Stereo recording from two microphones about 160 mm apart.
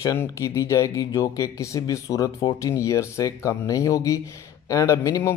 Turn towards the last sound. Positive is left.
turn(degrees=20)  # may be behind; listen again after turning